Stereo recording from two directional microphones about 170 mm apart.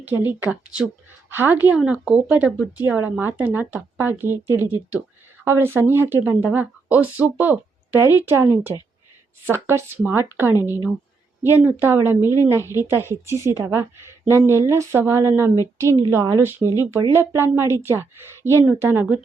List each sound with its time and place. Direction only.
0.3 s a woman's voice: 10° right (ahead or behind)